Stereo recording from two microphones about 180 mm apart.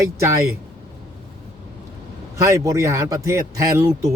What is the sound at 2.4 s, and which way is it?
A man's voice, 15° right (ahead or behind).